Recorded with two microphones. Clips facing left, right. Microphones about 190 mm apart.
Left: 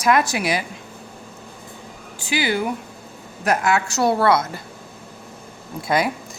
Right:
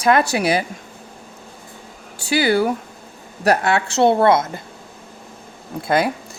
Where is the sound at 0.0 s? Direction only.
30° right (ahead or behind).